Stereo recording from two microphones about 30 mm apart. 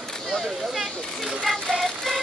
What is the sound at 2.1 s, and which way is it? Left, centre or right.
Music, centre.